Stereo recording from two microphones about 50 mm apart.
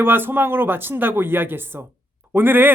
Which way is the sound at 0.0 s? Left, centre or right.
Right.